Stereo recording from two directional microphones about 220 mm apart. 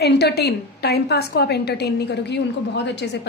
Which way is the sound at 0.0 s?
50° left (ahead or behind).